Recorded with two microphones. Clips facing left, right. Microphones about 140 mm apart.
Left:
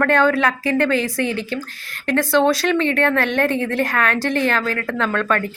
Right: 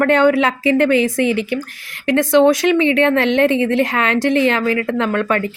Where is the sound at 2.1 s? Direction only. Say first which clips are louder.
Right 4 dB; 20° right (ahead or behind).